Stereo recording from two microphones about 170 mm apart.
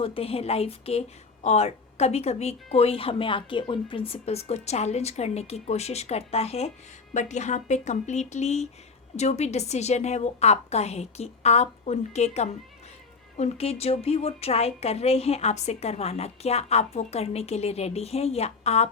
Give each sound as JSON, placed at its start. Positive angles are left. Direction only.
{"t": 0.0, "sound": "a woman's voice", "side_deg": 35}